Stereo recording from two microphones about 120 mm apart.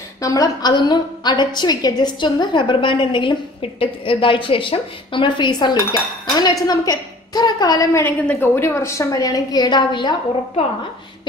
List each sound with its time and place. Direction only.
0.2 s a woman's voice: 30° left (ahead or behind)
8.0 s a woman's voice: 15° left (ahead or behind); by 10.1 s 40° left (ahead or behind)